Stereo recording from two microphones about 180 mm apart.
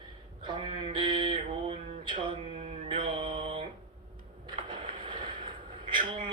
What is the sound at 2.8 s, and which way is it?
Mantra, 30° right (ahead or behind).